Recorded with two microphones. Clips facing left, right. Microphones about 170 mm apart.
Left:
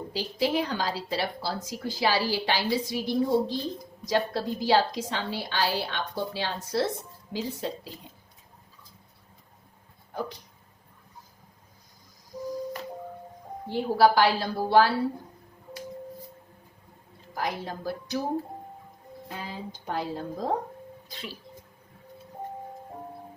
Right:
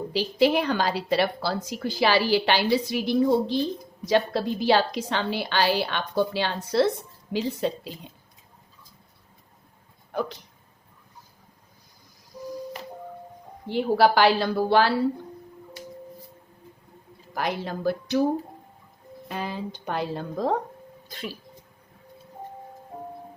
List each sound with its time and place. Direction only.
0.1 s a woman's voice: 70° right (ahead or behind)
10.1 s a sound: 75° right (ahead or behind)
13.7 s a woman's voice: 75° right (ahead or behind)
17.3 s a woman's voice: 75° right (ahead or behind)
19.3 s a woman's voice: 75° right (ahead or behind)